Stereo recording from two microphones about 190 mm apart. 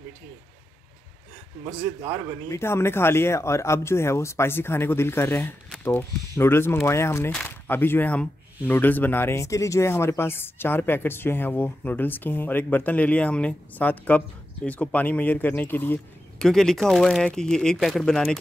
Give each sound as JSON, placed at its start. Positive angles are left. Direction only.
{"t": 2.5, "sound": "speech", "side_deg": 15}